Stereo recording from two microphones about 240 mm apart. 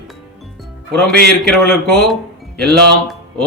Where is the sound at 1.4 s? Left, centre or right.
Centre.